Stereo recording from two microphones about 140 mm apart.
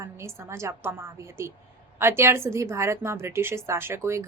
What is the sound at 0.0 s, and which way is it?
A woman's voice, 20° right (ahead or behind).